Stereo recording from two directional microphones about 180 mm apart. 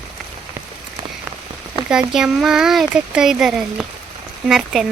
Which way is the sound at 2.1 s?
5° right (ahead or behind).